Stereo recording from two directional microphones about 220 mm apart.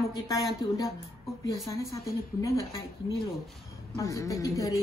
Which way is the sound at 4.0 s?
15° left (ahead or behind).